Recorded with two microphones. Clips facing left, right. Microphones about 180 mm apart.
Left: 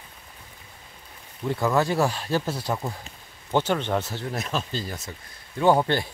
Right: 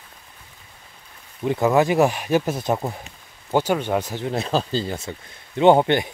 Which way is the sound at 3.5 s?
10° right (ahead or behind).